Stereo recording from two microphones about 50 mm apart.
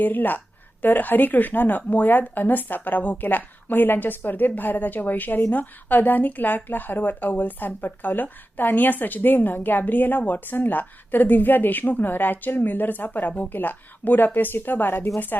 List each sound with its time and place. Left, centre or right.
0.0 s speech: left